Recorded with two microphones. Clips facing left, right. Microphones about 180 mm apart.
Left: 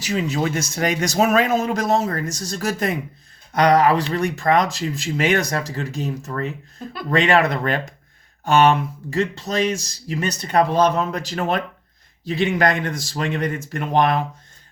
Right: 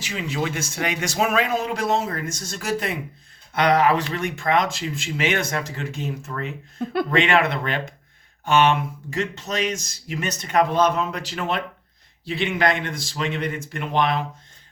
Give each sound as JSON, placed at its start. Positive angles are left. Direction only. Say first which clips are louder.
{"t": 0.0, "sound": "speech", "louder": "left 5 dB", "side_deg": 40}